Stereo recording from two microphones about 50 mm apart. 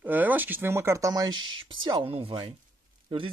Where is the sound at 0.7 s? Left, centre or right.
Right.